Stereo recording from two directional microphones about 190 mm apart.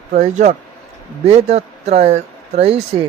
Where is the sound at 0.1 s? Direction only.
40° right (ahead or behind).